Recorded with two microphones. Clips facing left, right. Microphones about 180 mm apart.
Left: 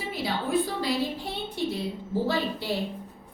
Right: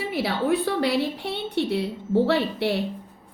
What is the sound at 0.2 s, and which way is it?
Female singing, 70° right (ahead or behind).